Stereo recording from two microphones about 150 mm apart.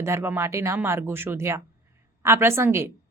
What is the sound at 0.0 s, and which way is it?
A woman's voice, 20° right (ahead or behind).